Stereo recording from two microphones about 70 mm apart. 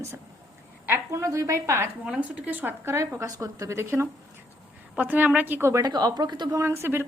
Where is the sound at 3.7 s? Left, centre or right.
Right.